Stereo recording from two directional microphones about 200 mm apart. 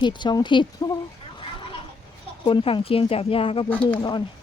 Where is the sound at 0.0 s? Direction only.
20° left (ahead or behind).